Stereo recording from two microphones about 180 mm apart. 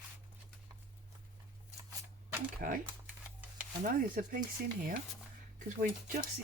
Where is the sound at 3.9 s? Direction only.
50° right (ahead or behind).